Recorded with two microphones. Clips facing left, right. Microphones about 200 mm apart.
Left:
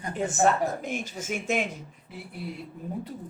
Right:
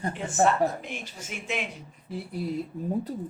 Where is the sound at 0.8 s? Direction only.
45° left (ahead or behind).